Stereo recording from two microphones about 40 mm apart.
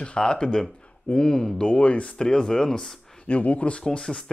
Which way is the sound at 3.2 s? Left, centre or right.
Left.